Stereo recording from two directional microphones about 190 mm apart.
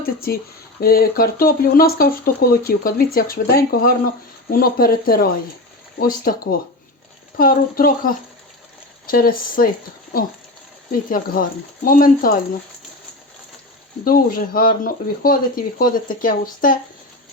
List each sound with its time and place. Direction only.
0.0 s speech: 50° left (ahead or behind)
11.4 s speech: 45° left (ahead or behind)
14.0 s speech: 50° left (ahead or behind)